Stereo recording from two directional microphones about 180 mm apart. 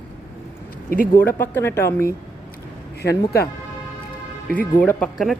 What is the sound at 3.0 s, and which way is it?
Speech, 60° left (ahead or behind).